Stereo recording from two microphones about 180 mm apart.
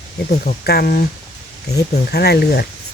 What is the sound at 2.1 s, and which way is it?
Speech, 60° left (ahead or behind).